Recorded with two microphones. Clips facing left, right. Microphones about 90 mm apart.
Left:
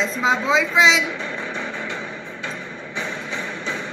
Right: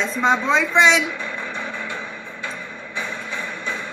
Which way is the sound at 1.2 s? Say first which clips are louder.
Left 1 dB; 55° right (ahead or behind).